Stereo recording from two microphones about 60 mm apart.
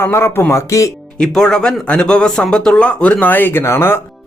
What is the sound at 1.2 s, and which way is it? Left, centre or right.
Speech, centre.